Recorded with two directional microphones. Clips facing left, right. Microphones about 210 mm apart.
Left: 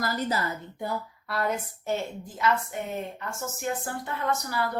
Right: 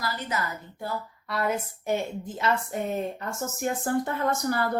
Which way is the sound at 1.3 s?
5° right (ahead or behind).